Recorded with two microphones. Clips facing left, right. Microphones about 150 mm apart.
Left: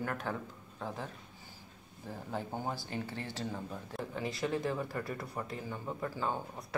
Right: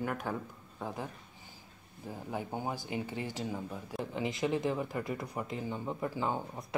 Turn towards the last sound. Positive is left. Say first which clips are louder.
# right 2 dB
turn(degrees=-15)  # may be behind; listen again after turning